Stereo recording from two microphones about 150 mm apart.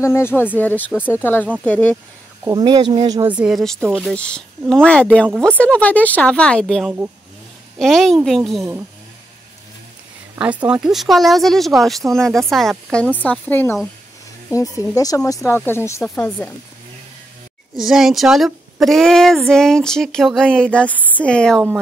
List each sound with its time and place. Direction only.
0.0 s speech: 15° left (ahead or behind)
2.4 s speech: 30° right (ahead or behind)
3.3 s speech: 5° right (ahead or behind)
10.7 s speech: 5° right (ahead or behind); by 13.7 s 15° left (ahead or behind)
15.0 s speech: 25° left (ahead or behind)
17.7 s speech: centre (ahead or behind)